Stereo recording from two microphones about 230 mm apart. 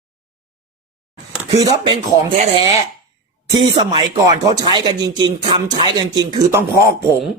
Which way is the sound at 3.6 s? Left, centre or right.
Centre.